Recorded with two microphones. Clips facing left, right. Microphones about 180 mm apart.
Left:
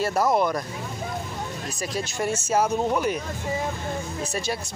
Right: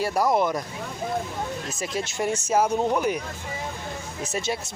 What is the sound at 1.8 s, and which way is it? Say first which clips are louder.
Speech: even; 20° right (ahead or behind).